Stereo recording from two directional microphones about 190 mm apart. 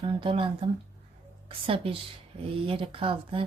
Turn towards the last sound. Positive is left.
turn(degrees=-30)  # may be behind; listen again after turning